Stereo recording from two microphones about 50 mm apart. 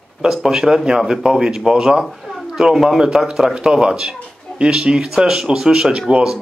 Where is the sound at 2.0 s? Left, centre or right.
Centre.